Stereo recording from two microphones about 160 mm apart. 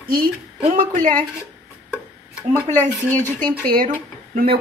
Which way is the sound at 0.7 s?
55° right (ahead or behind).